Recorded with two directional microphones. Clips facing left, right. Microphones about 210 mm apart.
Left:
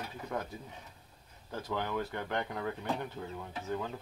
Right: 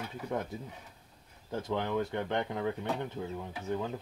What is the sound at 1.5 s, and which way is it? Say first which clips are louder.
Speech: right 3 dB; 25° right (ahead or behind).